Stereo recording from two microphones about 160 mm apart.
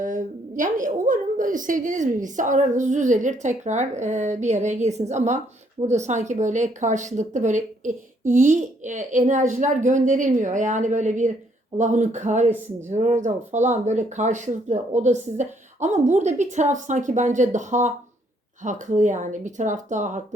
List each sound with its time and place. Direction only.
0.0 s a woman's voice: 55° right (ahead or behind)